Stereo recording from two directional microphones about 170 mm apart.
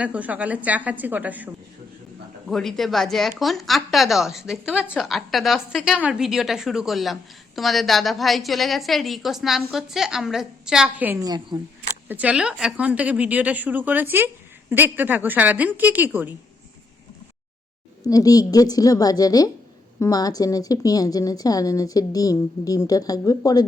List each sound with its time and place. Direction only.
0.0 s a woman's voice: 10° right (ahead or behind)
2.5 s a woman's voice: centre (ahead or behind)
11.2 s a woman's voice: 20° right (ahead or behind)
12.0 s a woman's voice: 10° right (ahead or behind)
18.1 s speech: 20° left (ahead or behind)